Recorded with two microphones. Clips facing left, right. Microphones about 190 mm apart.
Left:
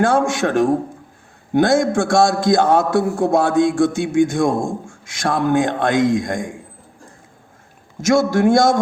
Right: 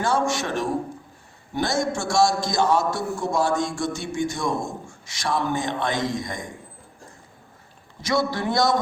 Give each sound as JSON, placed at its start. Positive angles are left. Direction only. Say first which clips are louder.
{"t": 0.0, "sound": "a man's voice", "louder": "left 7 dB", "side_deg": 55}
{"t": 8.0, "sound": "a man's voice", "louder": "left 9 dB", "side_deg": 45}